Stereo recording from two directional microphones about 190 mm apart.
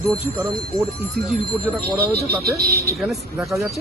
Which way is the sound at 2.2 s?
55° right (ahead or behind).